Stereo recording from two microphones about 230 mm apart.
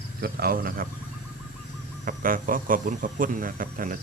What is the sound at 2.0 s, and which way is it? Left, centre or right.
Speech, right.